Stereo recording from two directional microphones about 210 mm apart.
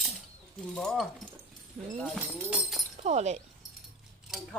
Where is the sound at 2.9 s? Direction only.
35° right (ahead or behind).